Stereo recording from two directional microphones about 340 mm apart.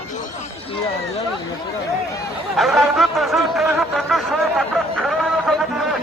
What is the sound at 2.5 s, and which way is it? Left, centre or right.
Speech, centre.